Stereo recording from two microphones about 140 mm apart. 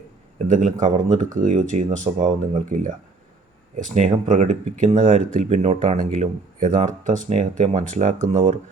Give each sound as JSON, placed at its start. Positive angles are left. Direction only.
{"t": 0.4, "sound": "speech", "side_deg": -65}